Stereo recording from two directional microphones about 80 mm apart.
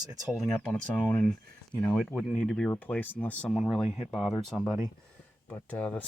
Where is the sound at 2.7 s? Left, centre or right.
Left.